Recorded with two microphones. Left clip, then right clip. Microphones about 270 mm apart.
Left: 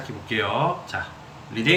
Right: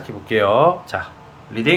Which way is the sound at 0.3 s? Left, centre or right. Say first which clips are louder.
Right 9 dB; right.